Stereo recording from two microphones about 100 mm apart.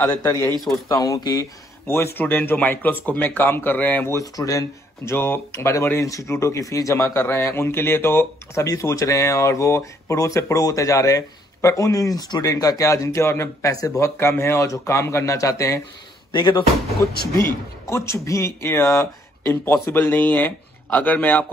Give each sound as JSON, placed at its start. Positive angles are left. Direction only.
{"t": 0.2, "sound": "speech", "side_deg": 30}
{"t": 1.9, "sound": "speech", "side_deg": 25}
{"t": 4.2, "sound": "speech", "side_deg": 35}
{"t": 5.1, "sound": "speech", "side_deg": 20}
{"t": 16.3, "sound": "speech", "side_deg": 55}
{"t": 17.0, "sound": "speech", "side_deg": 25}